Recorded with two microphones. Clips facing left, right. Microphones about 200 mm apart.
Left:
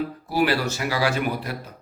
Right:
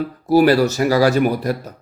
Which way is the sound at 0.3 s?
40° right (ahead or behind).